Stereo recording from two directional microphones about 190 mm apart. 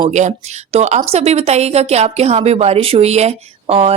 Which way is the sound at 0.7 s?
35° right (ahead or behind).